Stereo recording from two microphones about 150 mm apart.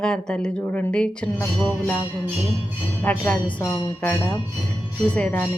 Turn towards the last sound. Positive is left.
turn(degrees=5)  # may be behind; listen again after turning